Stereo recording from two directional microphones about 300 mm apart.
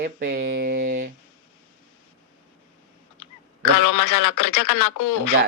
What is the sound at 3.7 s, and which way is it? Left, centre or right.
Speech, left.